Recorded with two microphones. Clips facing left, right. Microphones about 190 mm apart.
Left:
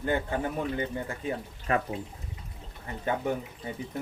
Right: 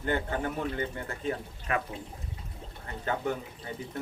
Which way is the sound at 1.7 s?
35° left (ahead or behind).